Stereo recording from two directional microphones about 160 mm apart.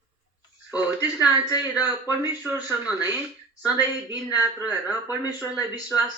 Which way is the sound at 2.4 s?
15° right (ahead or behind).